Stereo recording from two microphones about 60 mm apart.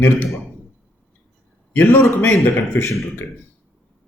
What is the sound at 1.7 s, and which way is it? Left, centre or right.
Speech, left.